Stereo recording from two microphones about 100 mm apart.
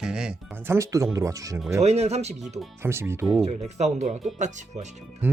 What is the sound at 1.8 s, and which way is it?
Speech, 90° right.